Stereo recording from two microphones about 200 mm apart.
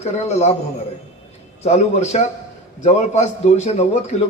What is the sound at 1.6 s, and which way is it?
Speech, 35° left (ahead or behind).